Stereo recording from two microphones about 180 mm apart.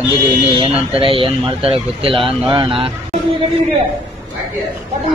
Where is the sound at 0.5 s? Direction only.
30° right (ahead or behind).